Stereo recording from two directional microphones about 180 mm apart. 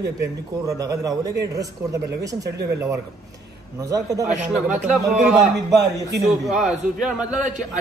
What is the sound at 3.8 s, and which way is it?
Speech, 20° right (ahead or behind).